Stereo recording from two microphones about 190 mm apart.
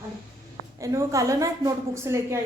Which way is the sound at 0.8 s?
15° right (ahead or behind).